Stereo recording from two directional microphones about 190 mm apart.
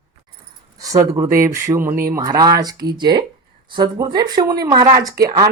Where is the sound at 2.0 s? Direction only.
20° right (ahead or behind).